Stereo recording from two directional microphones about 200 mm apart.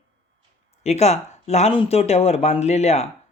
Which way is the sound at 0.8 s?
30° left (ahead or behind).